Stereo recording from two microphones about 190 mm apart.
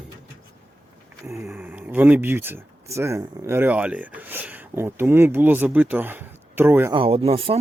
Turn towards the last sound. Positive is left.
turn(degrees=-30)  # may be behind; listen again after turning